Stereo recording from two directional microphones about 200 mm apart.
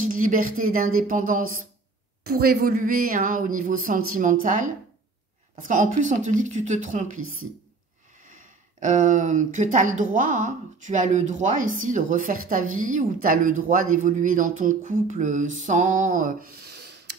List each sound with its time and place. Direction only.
0.0 s speech: 40° right (ahead or behind)
7.2 s a woman's voice: 90° right
8.7 s speech: 40° right (ahead or behind)